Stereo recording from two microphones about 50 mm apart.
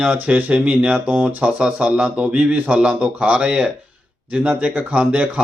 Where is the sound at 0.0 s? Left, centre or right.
Right.